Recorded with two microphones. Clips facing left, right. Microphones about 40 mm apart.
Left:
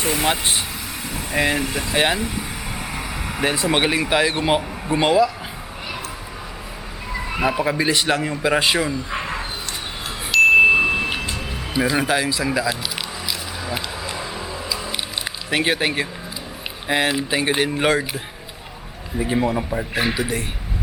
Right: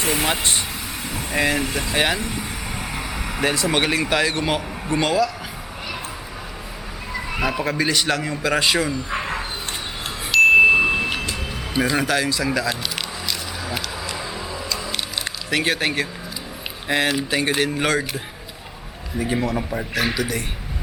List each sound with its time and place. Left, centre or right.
0.0 s speech: centre
2.1 s vehicle: centre
3.5 s speech: centre
7.1 s speech: centre
9.0 s dog: centre
10.3 s chime: centre
14.2 s music: centre
16.9 s speech: centre
19.2 s speech: centre
19.7 s a man's voice: left